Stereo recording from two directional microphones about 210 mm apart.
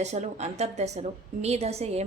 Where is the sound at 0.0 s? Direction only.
30° right (ahead or behind).